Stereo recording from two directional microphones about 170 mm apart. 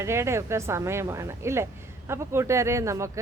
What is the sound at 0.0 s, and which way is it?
Speech, 15° right (ahead or behind).